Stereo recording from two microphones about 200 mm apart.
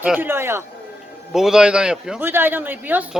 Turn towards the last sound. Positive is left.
turn(degrees=-10)  # may be behind; listen again after turning